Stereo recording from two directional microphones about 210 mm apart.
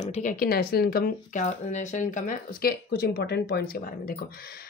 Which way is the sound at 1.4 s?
35° left (ahead or behind).